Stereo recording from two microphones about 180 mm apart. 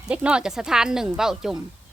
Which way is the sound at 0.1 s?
5° right (ahead or behind).